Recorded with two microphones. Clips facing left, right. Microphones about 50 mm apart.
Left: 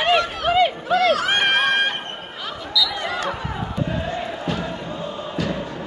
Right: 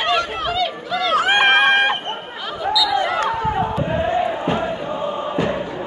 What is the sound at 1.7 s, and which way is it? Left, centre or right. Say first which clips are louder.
Run: right 4 dB; right.